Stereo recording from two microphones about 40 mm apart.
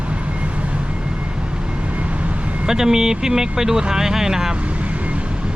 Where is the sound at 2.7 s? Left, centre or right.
Centre.